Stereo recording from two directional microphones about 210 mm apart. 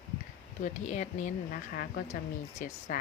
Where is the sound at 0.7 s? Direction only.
35° left (ahead or behind).